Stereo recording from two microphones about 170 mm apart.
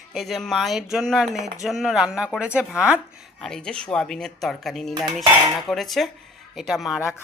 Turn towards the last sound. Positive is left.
turn(degrees=0)  # may be behind; listen again after turning